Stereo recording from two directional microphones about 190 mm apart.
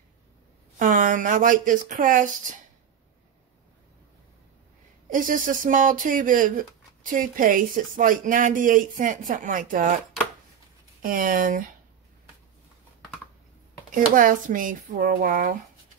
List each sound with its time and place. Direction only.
0.7 s speech: 45° right (ahead or behind)
5.1 s speech: 45° right (ahead or behind)
11.0 s speech: 45° right (ahead or behind)
13.9 s speech: 45° right (ahead or behind)